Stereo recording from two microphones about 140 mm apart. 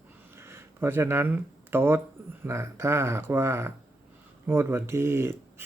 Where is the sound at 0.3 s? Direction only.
20° right (ahead or behind).